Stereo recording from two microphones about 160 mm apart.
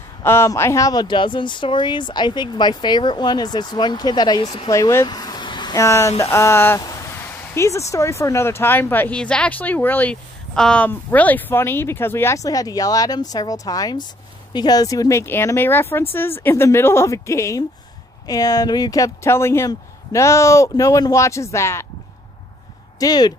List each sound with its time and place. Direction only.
0.2 s speech: 15° left (ahead or behind)
6.8 s a sound: 20° left (ahead or behind)
7.9 s speech: 20° left (ahead or behind)
22.9 s speech: 25° left (ahead or behind)